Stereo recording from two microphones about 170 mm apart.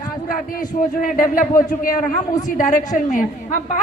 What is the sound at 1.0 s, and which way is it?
Speech, 55° left (ahead or behind).